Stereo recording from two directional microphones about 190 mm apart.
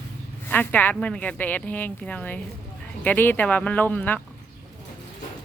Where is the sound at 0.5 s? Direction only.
10° left (ahead or behind).